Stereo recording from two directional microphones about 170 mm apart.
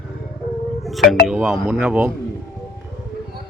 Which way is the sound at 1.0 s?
55° left (ahead or behind).